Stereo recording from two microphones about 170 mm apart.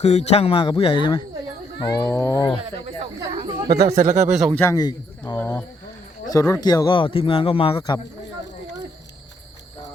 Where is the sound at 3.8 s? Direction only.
45° right (ahead or behind).